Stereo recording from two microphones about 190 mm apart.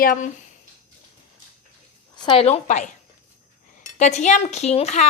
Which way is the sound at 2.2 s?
30° left (ahead or behind).